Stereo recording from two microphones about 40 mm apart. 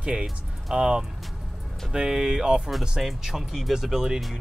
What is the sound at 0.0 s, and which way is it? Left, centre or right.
Speech, right.